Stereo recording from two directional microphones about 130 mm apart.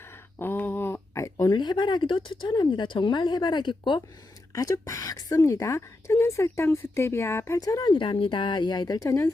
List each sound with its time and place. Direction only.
0.3 s speech: 15° left (ahead or behind); by 4.0 s 40° left (ahead or behind)
4.5 s a woman's voice: 25° left (ahead or behind)